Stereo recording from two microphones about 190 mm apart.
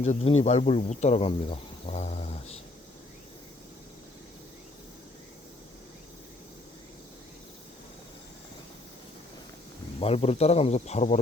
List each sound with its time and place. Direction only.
0.0 s speech: 35° left (ahead or behind)
10.0 s speech: 30° left (ahead or behind)